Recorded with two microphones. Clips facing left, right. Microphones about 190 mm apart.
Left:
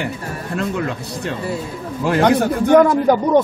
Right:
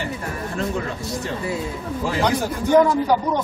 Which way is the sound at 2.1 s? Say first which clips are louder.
Left 8 dB; 60° left (ahead or behind).